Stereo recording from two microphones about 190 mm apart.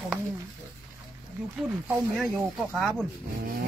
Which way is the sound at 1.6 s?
5° right (ahead or behind).